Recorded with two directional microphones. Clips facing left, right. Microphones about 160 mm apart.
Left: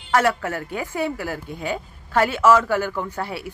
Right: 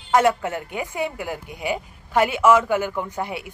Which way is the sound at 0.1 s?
20° right (ahead or behind).